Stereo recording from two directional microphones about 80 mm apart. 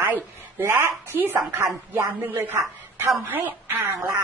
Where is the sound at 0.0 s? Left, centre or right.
Right.